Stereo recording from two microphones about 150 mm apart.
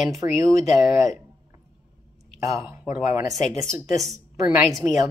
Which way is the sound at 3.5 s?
20° right (ahead or behind).